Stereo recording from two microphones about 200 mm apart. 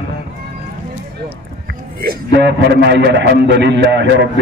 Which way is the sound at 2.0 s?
55° right (ahead or behind).